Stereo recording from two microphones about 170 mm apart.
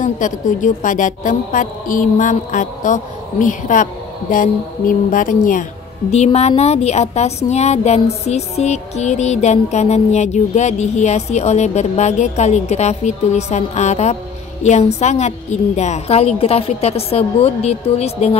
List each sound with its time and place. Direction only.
0.0 s a woman's voice: 50° left (ahead or behind)
6.1 s a woman's voice: 40° left (ahead or behind)